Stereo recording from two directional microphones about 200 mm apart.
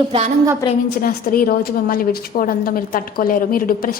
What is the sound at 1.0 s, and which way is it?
A woman's voice, 45° left (ahead or behind).